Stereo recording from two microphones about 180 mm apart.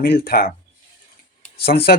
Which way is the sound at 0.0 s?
60° left (ahead or behind).